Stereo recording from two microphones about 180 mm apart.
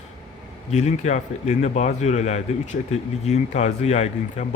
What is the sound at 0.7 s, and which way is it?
Speech, 40° left (ahead or behind).